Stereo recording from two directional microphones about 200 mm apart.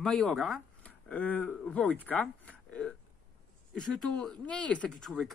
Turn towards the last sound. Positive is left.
turn(degrees=0)  # may be behind; listen again after turning